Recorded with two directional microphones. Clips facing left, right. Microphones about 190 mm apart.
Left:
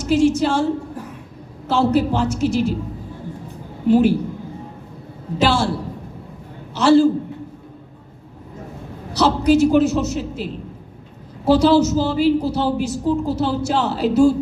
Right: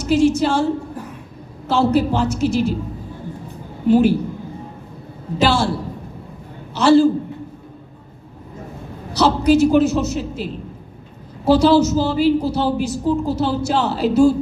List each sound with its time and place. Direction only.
0.0 s a woman's voice: 35° right (ahead or behind)
1.6 s a woman's voice: 35° right (ahead or behind)
3.9 s a woman's voice: 35° right (ahead or behind)
5.4 s a woman's voice: 35° right (ahead or behind)
6.7 s a woman's voice: 35° right (ahead or behind)
9.1 s a woman's voice: 35° right (ahead or behind)